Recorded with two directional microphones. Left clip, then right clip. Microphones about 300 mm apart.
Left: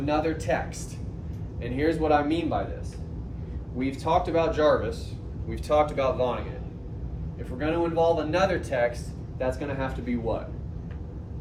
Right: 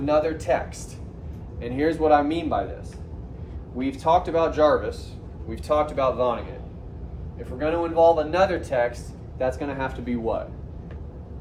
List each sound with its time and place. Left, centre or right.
0.0 s speech: centre
1.6 s speech: centre
3.8 s speech: right
7.3 s speech: centre